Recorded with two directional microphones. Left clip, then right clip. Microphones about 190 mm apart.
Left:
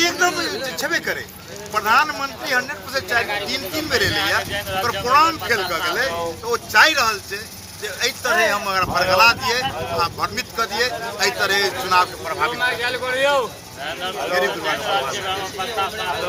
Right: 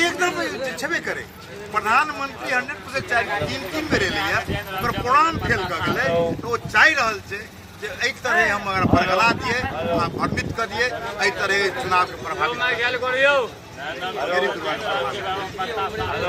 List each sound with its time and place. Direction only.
0.0 s a sound: 15° right (ahead or behind)
1.7 s speech: 10° right (ahead or behind)
12.5 s speech: 35° left (ahead or behind)
14.0 s speech: 5° right (ahead or behind)